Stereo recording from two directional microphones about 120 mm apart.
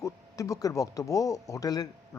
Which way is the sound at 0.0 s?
30° left (ahead or behind).